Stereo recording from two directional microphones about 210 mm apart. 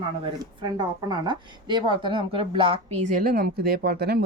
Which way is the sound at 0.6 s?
20° right (ahead or behind).